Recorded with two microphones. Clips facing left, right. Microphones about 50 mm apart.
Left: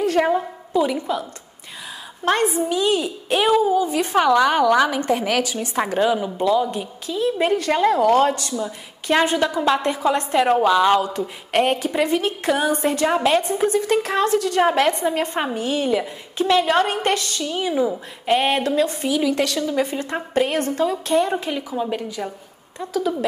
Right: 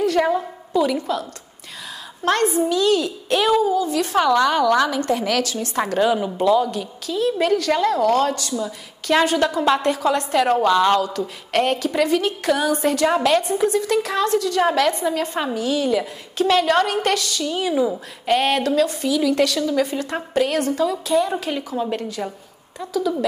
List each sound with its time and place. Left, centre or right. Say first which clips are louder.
0.0 s a woman's voice: even; centre
2.2 s a woman's voice: right 1 dB; centre
6.1 s a woman's voice: right 2 dB; centre
6.7 s a woman's voice: right 1 dB; left
16.0 s a woman's voice: right 2 dB; centre
17.6 s a woman's voice: even; centre
19.2 s a woman's voice: right 4 dB; centre
19.6 s a woman's voice: right 1 dB; centre
21.0 s a woman's voice: left 1 dB; left
21.7 s a woman's voice: even; centre